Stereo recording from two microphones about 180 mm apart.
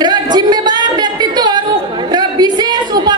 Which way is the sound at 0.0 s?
25° right (ahead or behind).